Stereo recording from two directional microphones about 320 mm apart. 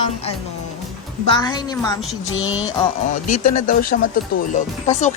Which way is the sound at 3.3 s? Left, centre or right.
Left.